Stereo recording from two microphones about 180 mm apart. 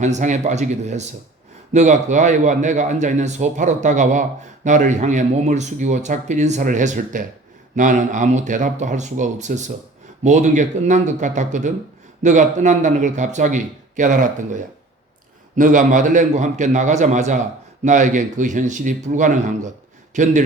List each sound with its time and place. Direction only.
0.0 s a man's voice: 40° right (ahead or behind)